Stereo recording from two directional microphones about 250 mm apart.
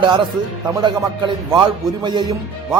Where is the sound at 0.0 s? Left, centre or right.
Centre.